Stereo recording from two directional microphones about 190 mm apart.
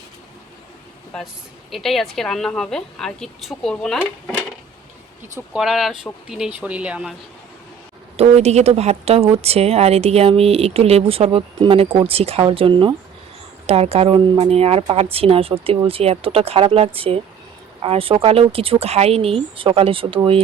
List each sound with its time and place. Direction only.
1.7 s a woman's voice: centre (ahead or behind)
5.5 s a woman's voice: centre (ahead or behind)
8.1 s a woman's voice: 35° right (ahead or behind)